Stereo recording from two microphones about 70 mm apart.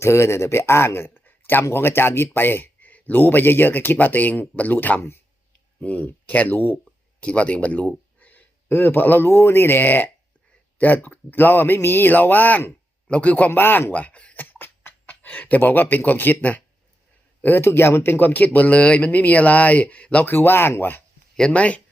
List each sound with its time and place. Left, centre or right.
0.0 s speech: left
7.2 s speech: centre
17.4 s speech: left
21.3 s speech: centre